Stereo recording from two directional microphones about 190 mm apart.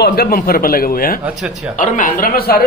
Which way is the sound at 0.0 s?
55° left (ahead or behind).